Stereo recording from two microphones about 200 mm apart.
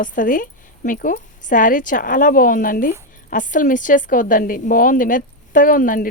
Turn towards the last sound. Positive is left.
turn(degrees=40)  # may be behind; listen again after turning